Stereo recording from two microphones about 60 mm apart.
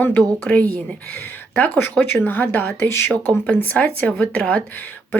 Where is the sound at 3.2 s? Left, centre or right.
Left.